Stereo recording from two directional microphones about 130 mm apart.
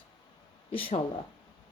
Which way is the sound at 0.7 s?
45° left (ahead or behind).